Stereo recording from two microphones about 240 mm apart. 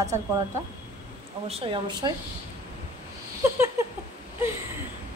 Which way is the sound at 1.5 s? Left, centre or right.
Centre.